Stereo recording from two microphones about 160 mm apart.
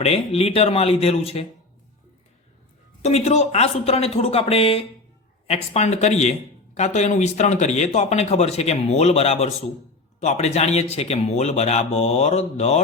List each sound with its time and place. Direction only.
0.0 s speech: 40° left (ahead or behind)
3.0 s speech: 45° left (ahead or behind)